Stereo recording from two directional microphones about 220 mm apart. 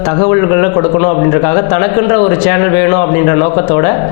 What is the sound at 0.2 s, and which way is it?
A man's voice, 20° left (ahead or behind).